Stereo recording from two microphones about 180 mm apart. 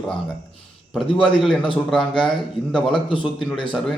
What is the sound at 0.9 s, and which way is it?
Speech, 5° left (ahead or behind).